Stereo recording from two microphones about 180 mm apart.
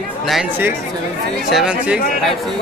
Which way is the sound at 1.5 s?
5° right (ahead or behind).